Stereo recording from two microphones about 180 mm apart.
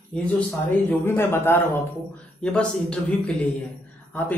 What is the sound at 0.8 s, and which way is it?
Speech, 10° left (ahead or behind).